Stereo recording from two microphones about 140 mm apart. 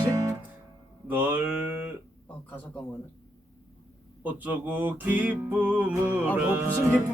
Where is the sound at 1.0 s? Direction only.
10° right (ahead or behind).